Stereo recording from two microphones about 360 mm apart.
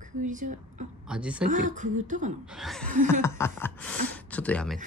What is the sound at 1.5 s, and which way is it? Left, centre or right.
Speech, right.